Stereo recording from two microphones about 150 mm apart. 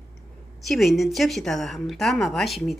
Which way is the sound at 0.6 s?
Centre (ahead or behind).